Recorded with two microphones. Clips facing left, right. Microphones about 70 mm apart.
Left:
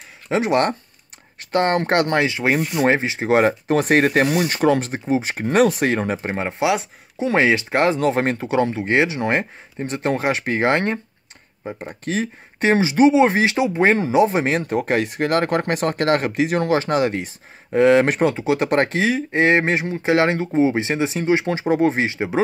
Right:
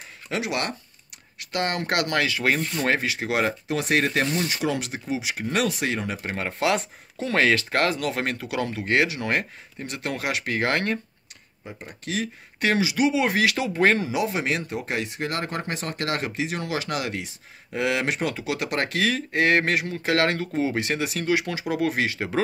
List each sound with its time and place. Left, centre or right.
0.3 s speech: left
6.1 s speech: left
11.6 s speech: left
14.0 s speech: left